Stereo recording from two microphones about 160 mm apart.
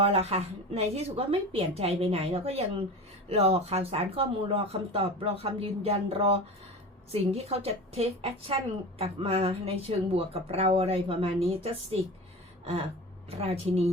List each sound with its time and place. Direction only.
0.0 s speech: 40° right (ahead or behind)
13.3 s speech: 35° right (ahead or behind)